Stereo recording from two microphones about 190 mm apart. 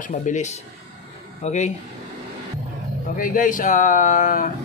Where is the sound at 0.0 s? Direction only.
45° left (ahead or behind).